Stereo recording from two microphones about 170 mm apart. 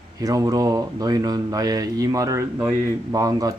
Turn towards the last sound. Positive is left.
turn(degrees=-20)  # may be behind; listen again after turning